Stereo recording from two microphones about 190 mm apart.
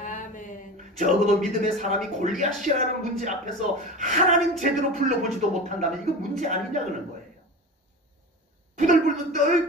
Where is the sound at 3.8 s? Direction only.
40° right (ahead or behind).